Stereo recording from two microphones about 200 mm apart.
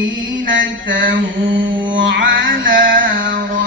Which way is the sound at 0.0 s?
70° right (ahead or behind).